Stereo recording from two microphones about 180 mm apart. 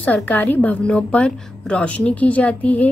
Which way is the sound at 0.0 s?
10° left (ahead or behind).